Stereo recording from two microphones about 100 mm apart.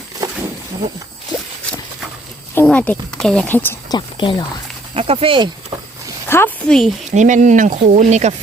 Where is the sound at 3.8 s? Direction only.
50° left (ahead or behind).